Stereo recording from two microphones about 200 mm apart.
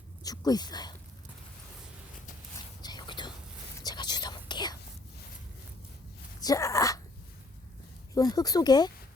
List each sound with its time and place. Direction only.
0.2 s speech: 20° left (ahead or behind)
2.8 s whispering: 20° left (ahead or behind)
6.4 s sneeze: 15° left (ahead or behind)
8.1 s speech: 20° left (ahead or behind)